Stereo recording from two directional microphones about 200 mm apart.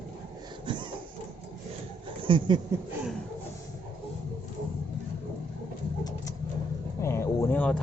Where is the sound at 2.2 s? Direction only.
25° right (ahead or behind).